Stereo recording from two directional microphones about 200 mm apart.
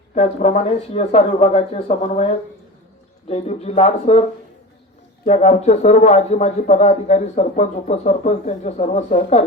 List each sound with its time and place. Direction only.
0.1 s a man's voice: 35° left (ahead or behind)
5.2 s a man's voice: 35° left (ahead or behind)